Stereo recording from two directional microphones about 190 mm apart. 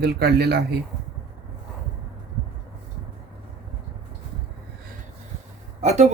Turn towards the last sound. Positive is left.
turn(degrees=-35)  # may be behind; listen again after turning